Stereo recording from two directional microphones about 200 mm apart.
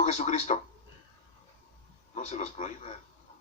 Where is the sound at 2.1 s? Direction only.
35° left (ahead or behind).